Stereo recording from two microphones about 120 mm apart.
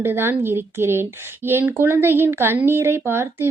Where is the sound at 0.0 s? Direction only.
20° right (ahead or behind).